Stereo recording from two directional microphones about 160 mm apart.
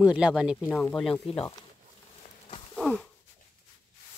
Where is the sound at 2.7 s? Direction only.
5° left (ahead or behind).